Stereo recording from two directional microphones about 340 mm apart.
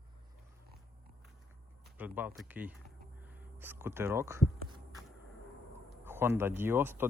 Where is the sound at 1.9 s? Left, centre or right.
Centre.